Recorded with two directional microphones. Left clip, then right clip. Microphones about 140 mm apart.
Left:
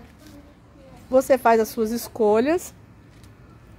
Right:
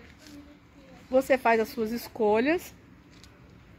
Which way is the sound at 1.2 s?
15° left (ahead or behind).